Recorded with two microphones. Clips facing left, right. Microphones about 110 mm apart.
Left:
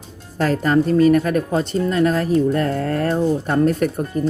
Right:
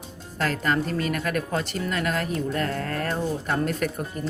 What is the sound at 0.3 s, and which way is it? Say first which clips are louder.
Speech: left 8 dB; 35° left (ahead or behind).